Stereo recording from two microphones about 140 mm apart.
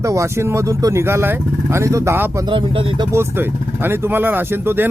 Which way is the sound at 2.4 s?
35° right (ahead or behind).